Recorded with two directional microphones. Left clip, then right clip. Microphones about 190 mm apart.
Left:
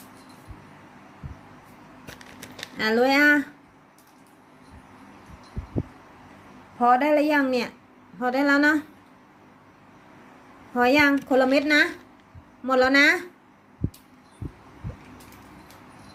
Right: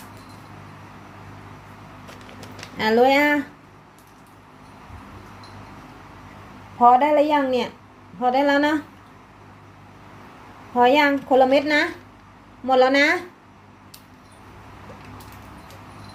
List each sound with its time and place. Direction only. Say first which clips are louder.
2.7 s speech: right 4 dB; 15° left (ahead or behind)
6.7 s speech: right 5 dB; 25° left (ahead or behind)
10.8 s speech: right 3 dB; 25° left (ahead or behind)